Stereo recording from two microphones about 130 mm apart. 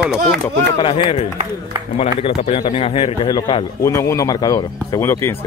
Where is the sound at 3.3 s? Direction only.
35° left (ahead or behind).